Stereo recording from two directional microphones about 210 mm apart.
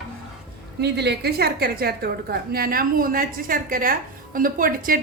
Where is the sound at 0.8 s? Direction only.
50° right (ahead or behind).